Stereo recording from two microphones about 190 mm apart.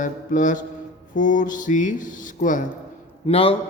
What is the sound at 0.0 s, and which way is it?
Mantra, 40° left (ahead or behind).